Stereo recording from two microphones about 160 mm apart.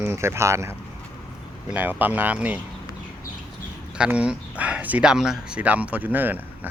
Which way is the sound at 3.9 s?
5° right (ahead or behind).